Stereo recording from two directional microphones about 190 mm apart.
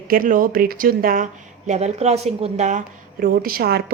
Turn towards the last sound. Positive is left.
turn(degrees=-55)  # may be behind; listen again after turning